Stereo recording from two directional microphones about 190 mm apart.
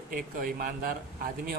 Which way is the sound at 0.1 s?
45° right (ahead or behind).